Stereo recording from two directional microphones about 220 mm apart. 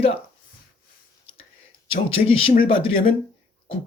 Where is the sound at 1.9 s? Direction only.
25° left (ahead or behind).